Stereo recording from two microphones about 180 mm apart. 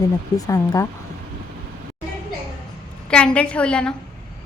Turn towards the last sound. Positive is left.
turn(degrees=5)  # may be behind; listen again after turning